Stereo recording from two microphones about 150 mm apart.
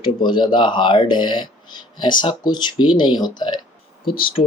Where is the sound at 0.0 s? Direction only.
30° left (ahead or behind).